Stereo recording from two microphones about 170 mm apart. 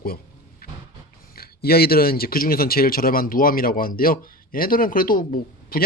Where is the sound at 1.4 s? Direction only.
65° left (ahead or behind).